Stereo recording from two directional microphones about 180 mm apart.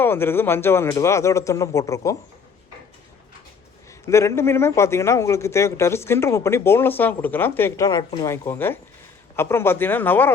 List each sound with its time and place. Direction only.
0.0 s a man's voice: 10° left (ahead or behind)
4.0 s a man's voice: 15° left (ahead or behind)